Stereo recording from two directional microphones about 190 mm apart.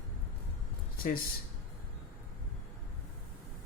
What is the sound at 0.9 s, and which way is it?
Speech, 50° left (ahead or behind).